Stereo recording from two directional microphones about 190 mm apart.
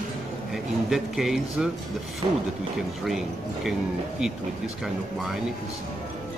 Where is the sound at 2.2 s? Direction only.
35° right (ahead or behind).